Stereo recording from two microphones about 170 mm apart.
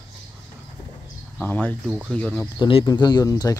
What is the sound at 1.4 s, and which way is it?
Speech, 10° left (ahead or behind).